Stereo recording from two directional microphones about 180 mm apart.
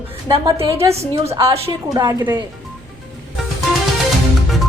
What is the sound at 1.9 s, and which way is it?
Speech, 20° right (ahead or behind).